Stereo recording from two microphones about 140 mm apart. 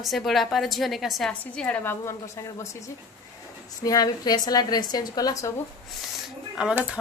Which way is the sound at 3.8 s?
25° left (ahead or behind).